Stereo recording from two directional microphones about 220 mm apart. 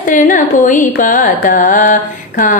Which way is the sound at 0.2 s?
35° left (ahead or behind).